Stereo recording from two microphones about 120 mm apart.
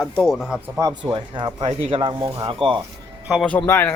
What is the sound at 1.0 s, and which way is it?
Speech, 40° right (ahead or behind).